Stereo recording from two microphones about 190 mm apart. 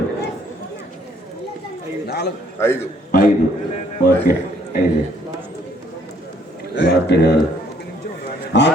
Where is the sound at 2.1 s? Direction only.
60° left (ahead or behind).